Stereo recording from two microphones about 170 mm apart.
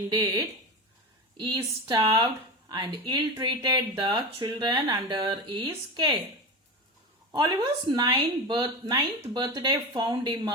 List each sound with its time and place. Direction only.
0.1 s speech: 25° right (ahead or behind)
7.9 s speech: 25° right (ahead or behind)